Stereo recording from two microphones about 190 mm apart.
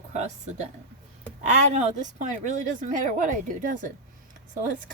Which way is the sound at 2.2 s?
40° right (ahead or behind).